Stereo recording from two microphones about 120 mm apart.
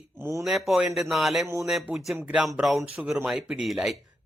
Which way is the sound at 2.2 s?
15° right (ahead or behind).